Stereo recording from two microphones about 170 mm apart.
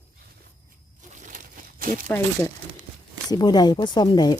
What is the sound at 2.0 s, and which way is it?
Speech, 10° left (ahead or behind).